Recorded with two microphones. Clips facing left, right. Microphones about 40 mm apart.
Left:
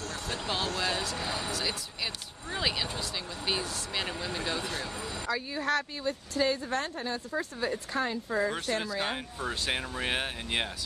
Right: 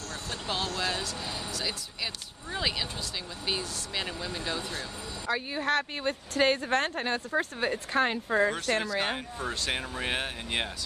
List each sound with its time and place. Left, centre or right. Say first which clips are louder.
0.3 s speech: even; centre
5.3 s speech: right 2 dB; right
6.0 s speech: right 4 dB; right
9.1 s speech: right 1 dB; centre